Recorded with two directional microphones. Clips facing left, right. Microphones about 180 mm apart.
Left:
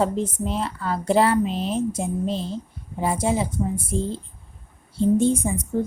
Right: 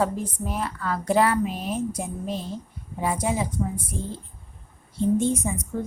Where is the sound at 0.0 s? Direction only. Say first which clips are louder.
Left 3 dB; 25° left (ahead or behind).